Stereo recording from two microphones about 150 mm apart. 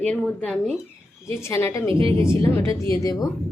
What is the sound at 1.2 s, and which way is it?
A woman's voice, 20° left (ahead or behind).